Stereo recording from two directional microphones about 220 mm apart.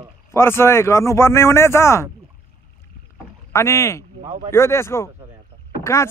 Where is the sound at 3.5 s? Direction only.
10° left (ahead or behind).